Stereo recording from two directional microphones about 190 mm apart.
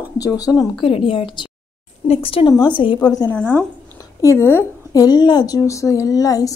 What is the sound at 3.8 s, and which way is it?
A woman's voice, 15° left (ahead or behind).